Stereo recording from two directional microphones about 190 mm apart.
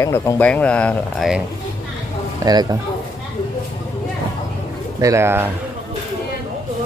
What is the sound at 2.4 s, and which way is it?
Speech, 20° right (ahead or behind).